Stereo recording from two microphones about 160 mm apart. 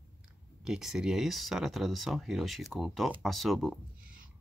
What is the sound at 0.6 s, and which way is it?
Speech, 5° right (ahead or behind).